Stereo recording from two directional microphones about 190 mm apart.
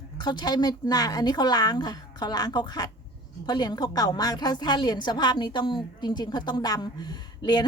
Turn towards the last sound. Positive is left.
turn(degrees=25)  # may be behind; listen again after turning